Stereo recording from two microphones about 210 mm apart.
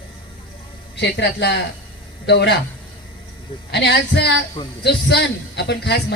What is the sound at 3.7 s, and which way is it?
A man's voice, 50° left (ahead or behind).